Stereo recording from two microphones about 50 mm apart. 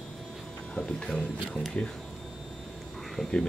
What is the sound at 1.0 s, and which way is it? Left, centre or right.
Speech, centre.